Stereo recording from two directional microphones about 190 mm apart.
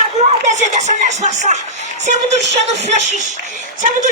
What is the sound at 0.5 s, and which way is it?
Speech, 35° right (ahead or behind).